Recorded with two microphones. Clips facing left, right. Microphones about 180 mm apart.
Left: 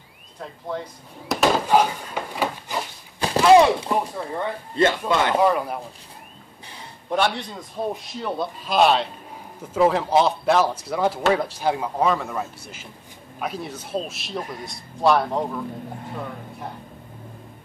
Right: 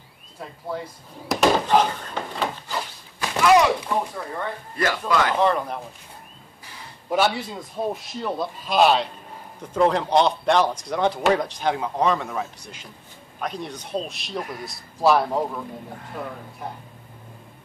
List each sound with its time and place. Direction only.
0.4 s speech: 5° right (ahead or behind)
3.2 s speech: 30° left (ahead or behind)
5.4 s speech: 10° left (ahead or behind)
7.1 s speech: 5° right (ahead or behind)
14.4 s speech: 25° left (ahead or behind)
14.7 s speech: centre (ahead or behind)